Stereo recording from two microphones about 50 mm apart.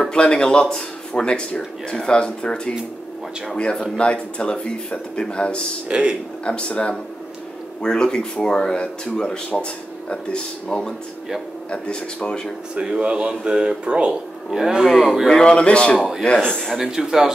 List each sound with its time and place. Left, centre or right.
0.0 s speech: centre
5.9 s speech: right
6.4 s speech: centre
12.7 s a man's voice: right
15.2 s speech: centre
16.0 s a man's voice: centre